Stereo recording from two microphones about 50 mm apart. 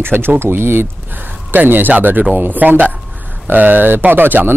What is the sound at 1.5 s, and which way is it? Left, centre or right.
Speech, right.